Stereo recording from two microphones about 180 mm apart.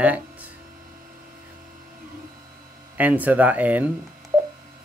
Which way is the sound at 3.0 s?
10° right (ahead or behind).